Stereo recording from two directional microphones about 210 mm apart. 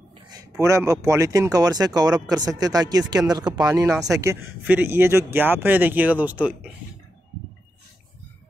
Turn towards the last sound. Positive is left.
turn(degrees=-5)  # may be behind; listen again after turning